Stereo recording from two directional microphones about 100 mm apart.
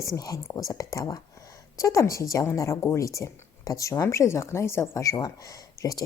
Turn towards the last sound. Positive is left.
turn(degrees=35)  # may be behind; listen again after turning